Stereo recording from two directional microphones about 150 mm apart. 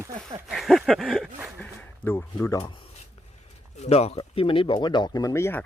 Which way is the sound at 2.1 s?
15° left (ahead or behind).